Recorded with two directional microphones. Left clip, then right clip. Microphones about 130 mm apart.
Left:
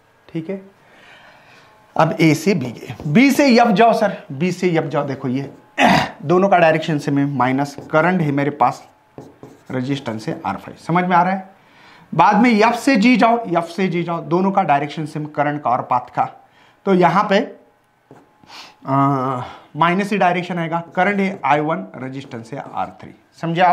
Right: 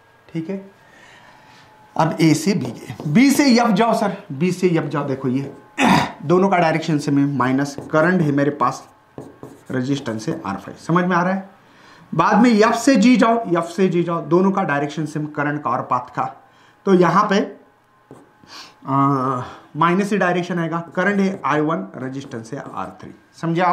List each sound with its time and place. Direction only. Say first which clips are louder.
0.3 s speech: left 1 dB; 45° left (ahead or behind)
2.0 s speech: left 2 dB; 45° left (ahead or behind)
18.5 s speech: left 2 dB; 50° left (ahead or behind)